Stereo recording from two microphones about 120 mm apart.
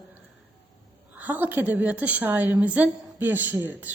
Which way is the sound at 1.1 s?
15° right (ahead or behind).